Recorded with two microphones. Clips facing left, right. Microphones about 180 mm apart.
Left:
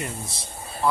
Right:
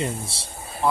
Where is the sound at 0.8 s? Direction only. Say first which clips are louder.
Right 1 dB; 20° right (ahead or behind).